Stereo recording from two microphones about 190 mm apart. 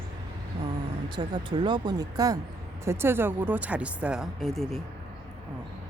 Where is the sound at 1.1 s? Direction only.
25° right (ahead or behind); by 4.8 s centre (ahead or behind).